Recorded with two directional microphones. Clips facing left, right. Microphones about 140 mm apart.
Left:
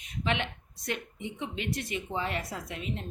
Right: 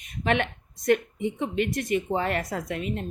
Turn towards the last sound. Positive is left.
turn(degrees=-55)  # may be behind; listen again after turning